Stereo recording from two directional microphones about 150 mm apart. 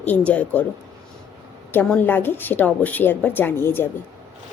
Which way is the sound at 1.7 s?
10° left (ahead or behind).